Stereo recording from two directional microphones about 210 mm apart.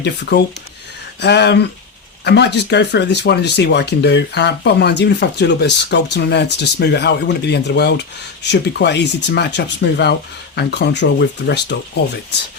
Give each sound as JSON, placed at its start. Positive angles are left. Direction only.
{"t": 0.0, "sound": "speech", "side_deg": 55}